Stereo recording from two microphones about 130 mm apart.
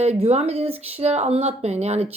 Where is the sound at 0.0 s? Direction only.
55° right (ahead or behind).